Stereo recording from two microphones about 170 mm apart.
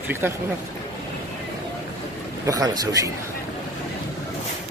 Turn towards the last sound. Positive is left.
turn(degrees=-20)  # may be behind; listen again after turning